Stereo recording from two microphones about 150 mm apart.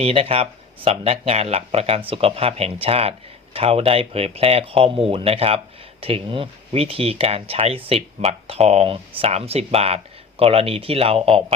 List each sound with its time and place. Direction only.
0.0 s speech: 40° right (ahead or behind)